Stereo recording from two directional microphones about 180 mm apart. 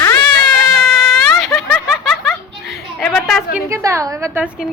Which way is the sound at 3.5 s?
15° right (ahead or behind).